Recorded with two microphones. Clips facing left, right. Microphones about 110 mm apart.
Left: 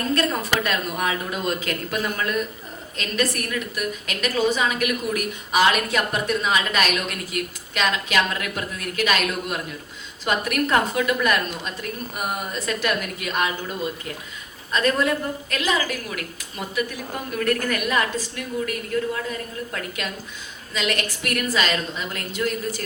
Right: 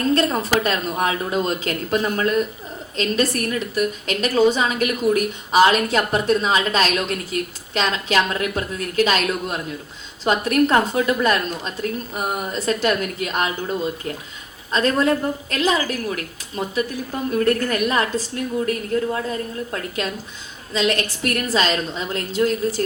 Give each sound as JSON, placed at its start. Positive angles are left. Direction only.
{"t": 0.1, "sound": "a woman's voice", "side_deg": -30}